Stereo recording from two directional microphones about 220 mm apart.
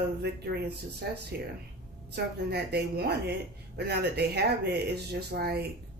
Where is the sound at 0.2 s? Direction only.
50° right (ahead or behind).